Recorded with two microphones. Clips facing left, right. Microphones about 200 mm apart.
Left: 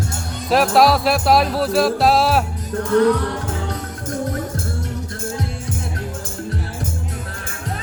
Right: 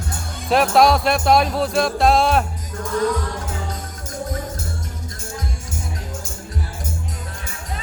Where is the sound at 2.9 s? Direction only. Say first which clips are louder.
Left 6 dB; 65° left (ahead or behind).